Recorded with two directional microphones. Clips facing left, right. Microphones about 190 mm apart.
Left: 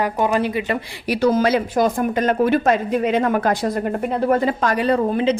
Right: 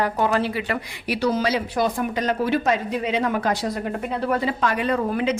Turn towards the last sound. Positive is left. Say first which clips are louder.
# left 4 dB
turn(degrees=30)  # may be behind; listen again after turning